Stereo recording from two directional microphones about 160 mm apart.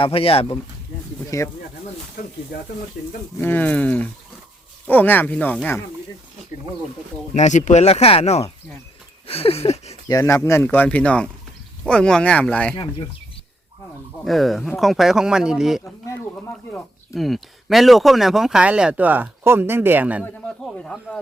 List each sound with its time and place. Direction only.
0.0 s a sound: 35° left (ahead or behind)
1.3 s speech: 20° left (ahead or behind)
3.4 s speech: 10° left (ahead or behind)
7.3 s speech: 50° left (ahead or behind)
9.2 s a sound: 35° left (ahead or behind)
10.1 s speech: 20° left (ahead or behind)
12.7 s a sound: 35° left (ahead or behind)
14.3 s speech: centre (ahead or behind)
20.8 s speech: 5° left (ahead or behind)